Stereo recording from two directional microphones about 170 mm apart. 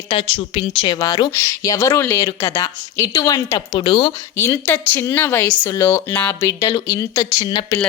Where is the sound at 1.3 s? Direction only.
15° left (ahead or behind); by 4.1 s 30° left (ahead or behind).